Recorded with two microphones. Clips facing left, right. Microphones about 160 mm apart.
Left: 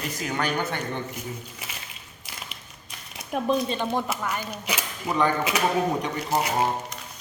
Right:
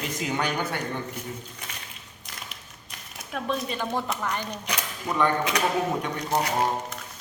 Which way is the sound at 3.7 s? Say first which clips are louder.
Left 3 dB; 20° left (ahead or behind).